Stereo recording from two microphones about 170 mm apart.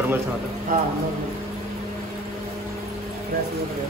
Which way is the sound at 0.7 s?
55° right (ahead or behind).